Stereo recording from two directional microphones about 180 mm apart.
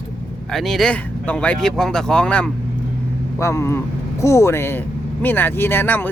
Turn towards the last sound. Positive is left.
turn(degrees=10)  # may be behind; listen again after turning